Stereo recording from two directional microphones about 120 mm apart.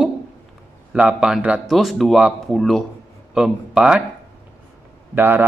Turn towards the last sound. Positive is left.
turn(degrees=-15)  # may be behind; listen again after turning